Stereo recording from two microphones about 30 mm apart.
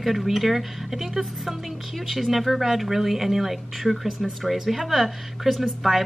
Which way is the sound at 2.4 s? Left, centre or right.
Centre.